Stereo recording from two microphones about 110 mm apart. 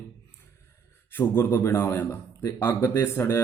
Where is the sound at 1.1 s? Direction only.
20° left (ahead or behind).